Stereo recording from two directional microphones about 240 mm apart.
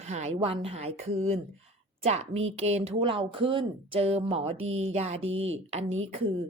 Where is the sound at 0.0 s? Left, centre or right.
Right.